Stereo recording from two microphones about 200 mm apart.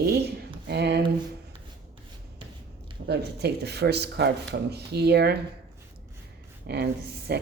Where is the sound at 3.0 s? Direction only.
55° right (ahead or behind).